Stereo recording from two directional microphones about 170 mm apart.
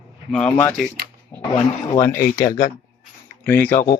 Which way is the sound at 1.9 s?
15° left (ahead or behind).